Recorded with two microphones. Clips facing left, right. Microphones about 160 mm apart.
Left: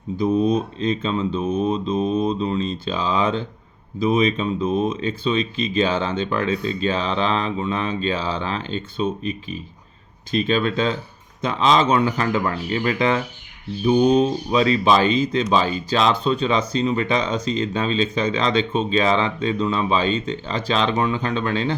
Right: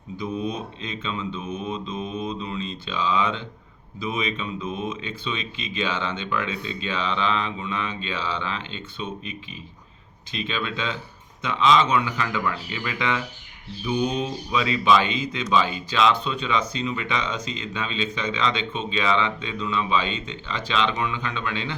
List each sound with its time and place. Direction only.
0.2 s speech: 35° left (ahead or behind)